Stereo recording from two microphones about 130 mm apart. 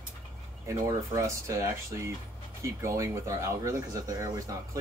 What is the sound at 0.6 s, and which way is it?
Speech, 25° right (ahead or behind).